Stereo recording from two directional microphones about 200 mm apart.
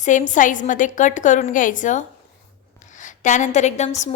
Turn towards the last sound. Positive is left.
turn(degrees=35)  # may be behind; listen again after turning